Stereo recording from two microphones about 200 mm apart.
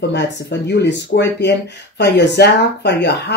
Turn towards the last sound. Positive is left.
turn(degrees=60)  # may be behind; listen again after turning